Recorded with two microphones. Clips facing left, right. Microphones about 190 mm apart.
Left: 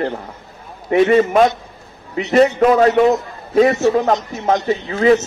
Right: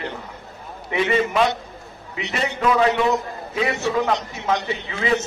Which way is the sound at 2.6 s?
50° left (ahead or behind).